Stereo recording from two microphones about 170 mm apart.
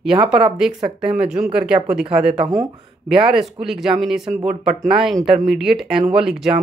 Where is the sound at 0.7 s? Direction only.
30° right (ahead or behind).